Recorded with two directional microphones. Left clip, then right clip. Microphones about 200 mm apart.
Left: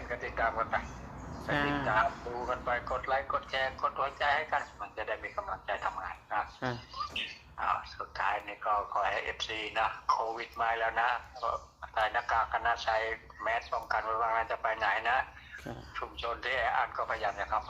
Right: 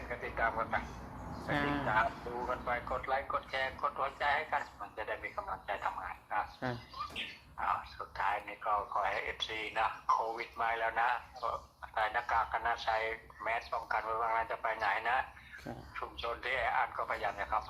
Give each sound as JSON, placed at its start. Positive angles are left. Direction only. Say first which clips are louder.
{"t": 0.1, "sound": "speech", "louder": "left 2 dB", "side_deg": 15}